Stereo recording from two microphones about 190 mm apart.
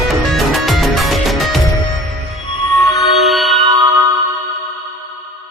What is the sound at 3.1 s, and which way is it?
Music, centre (ahead or behind).